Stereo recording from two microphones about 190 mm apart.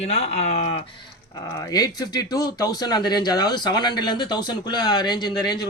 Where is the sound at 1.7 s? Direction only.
20° left (ahead or behind).